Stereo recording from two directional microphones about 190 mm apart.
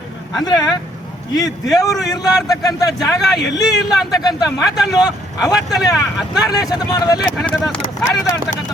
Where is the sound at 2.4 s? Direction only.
20° left (ahead or behind).